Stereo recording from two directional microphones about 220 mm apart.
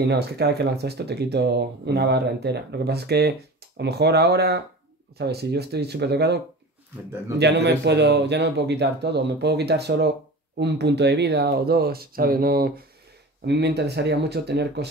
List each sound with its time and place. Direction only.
0.0 s speech: 50° right (ahead or behind)